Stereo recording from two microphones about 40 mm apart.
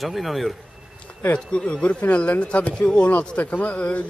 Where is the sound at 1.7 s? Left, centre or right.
Left.